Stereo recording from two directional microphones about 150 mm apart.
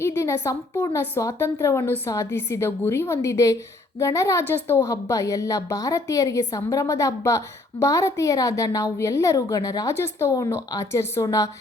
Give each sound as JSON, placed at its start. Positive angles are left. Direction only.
{"t": 0.0, "sound": "a woman's voice", "side_deg": 20}